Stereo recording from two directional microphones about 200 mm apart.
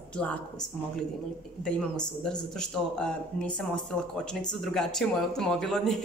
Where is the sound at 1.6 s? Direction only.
5° left (ahead or behind).